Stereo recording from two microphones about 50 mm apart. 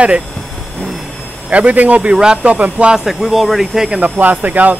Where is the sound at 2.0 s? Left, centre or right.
Centre.